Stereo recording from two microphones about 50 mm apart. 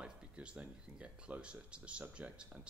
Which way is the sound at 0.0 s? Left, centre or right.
Right.